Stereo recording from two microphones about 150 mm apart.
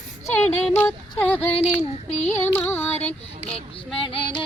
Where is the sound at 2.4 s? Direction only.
15° left (ahead or behind).